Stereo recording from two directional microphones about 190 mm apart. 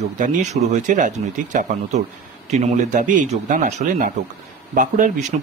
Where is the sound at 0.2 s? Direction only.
40° right (ahead or behind).